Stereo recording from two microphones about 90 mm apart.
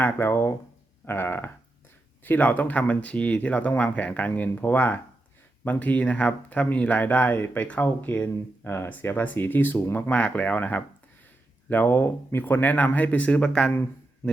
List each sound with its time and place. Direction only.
0.0 s speech: 25° left (ahead or behind); by 13.7 s 10° left (ahead or behind)